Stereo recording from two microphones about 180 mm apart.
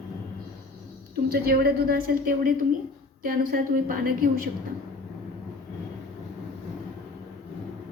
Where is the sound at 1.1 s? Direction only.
60° right (ahead or behind).